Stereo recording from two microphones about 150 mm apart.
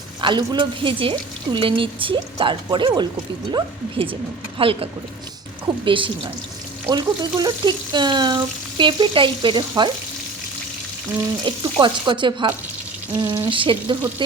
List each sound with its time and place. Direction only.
0.2 s speech: 30° right (ahead or behind)
6.8 s frying: 25° right (ahead or behind)
8.8 s speech: 30° right (ahead or behind)
11.4 s speech: 30° right (ahead or behind)
13.1 s frying: 20° right (ahead or behind)
13.4 s speech: 35° right (ahead or behind)